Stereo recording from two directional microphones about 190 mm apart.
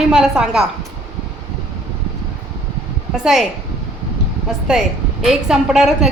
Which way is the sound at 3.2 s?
Centre (ahead or behind).